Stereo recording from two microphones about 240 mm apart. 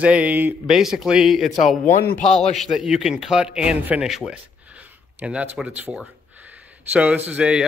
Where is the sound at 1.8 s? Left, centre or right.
Left.